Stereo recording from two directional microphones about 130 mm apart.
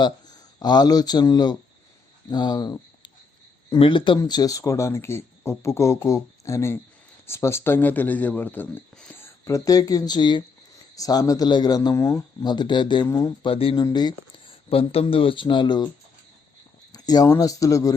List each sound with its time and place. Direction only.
0.0 s speech: 35° left (ahead or behind)
4.2 s speech: 30° left (ahead or behind); by 9.3 s 15° left (ahead or behind)
9.4 s speech: 25° left (ahead or behind)
13.4 s speech: 45° left (ahead or behind)
13.7 s speech: 30° left (ahead or behind)
14.7 s speech: 45° left (ahead or behind)
16.9 s speech: 30° left (ahead or behind)